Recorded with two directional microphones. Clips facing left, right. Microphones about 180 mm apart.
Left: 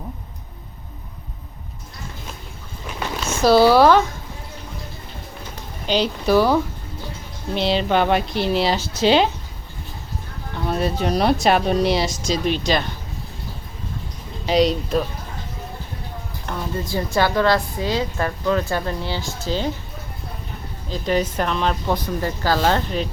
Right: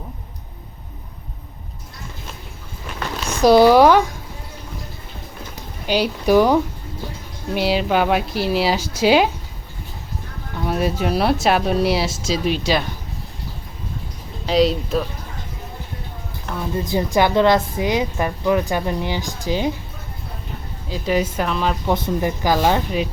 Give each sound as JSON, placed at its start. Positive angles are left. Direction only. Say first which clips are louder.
{"t": 3.2, "sound": "speech", "louder": "right 2 dB", "side_deg": -15}
{"t": 5.8, "sound": "a woman's voice", "louder": "right 1 dB", "side_deg": -10}
{"t": 10.7, "sound": "speech", "louder": "right 1 dB", "side_deg": -10}
{"t": 14.4, "sound": "speech", "louder": "right 1 dB", "side_deg": 0}
{"t": 16.7, "sound": "a woman's voice", "louder": "right 4 dB", "side_deg": -20}
{"t": 20.9, "sound": "a woman's voice", "louder": "right 1 dB", "side_deg": -10}
{"t": 21.9, "sound": "a woman's voice", "louder": "right 3 dB", "side_deg": -20}